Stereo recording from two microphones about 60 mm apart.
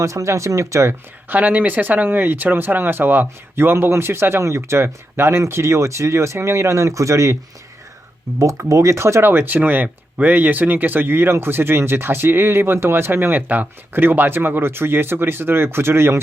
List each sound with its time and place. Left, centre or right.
0.0 s speech: right
0.9 s speech: right
8.4 s speech: right